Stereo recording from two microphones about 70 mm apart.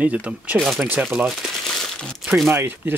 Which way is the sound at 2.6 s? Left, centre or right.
Right.